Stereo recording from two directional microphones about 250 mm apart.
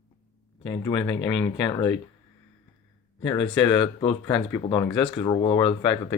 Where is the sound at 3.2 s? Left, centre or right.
Centre.